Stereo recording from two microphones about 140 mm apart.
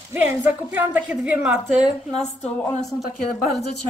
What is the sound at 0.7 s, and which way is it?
Speech, 10° right (ahead or behind).